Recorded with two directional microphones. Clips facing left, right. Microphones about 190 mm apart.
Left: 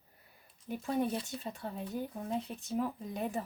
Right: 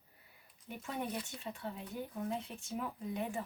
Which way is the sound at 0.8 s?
35° left (ahead or behind).